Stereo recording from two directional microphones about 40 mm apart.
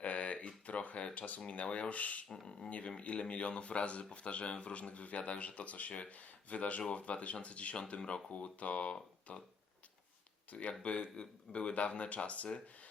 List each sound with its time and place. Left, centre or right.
0.0 s a sound: left
1.6 s speech: left
10.5 s speech: left